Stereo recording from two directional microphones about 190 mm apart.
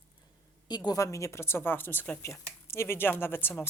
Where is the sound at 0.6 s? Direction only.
20° left (ahead or behind).